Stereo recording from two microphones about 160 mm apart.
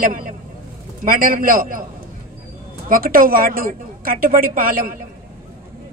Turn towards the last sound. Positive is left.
turn(degrees=-65)  # may be behind; listen again after turning